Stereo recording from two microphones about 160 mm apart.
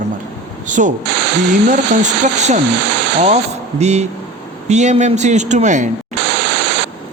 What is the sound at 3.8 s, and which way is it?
Speech, 45° right (ahead or behind).